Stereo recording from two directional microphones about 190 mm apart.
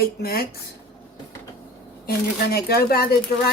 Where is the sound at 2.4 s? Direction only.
55° left (ahead or behind).